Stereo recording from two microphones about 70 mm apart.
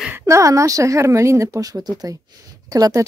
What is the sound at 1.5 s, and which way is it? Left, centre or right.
Speech, right.